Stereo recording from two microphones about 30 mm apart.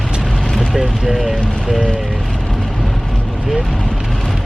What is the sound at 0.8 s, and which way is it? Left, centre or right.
Speech, centre.